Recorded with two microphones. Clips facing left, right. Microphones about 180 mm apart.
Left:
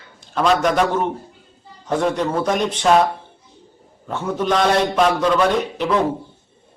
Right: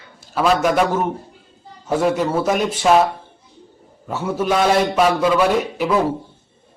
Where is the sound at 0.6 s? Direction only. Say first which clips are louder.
Right 1 dB; 5° right (ahead or behind).